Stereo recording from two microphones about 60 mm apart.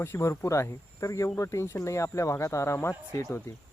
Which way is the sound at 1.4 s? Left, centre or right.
Left.